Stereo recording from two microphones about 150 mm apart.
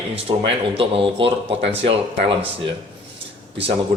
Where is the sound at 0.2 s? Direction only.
35° right (ahead or behind).